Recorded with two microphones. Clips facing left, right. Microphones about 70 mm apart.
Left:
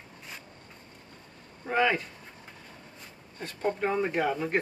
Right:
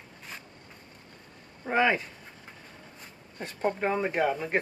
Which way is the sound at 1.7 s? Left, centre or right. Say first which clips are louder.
Right 1 dB; right.